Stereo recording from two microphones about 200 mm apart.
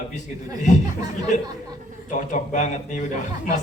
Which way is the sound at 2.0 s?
40° left (ahead or behind).